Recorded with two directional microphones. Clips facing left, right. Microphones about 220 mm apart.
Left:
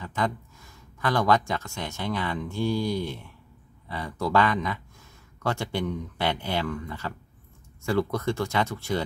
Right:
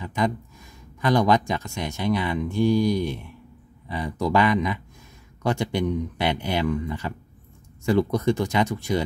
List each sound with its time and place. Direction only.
0.0 s speech: 15° right (ahead or behind)